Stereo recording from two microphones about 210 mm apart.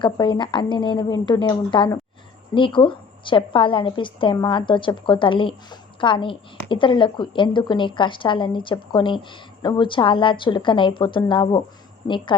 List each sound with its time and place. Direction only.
0.0 s a woman's voice: 20° left (ahead or behind)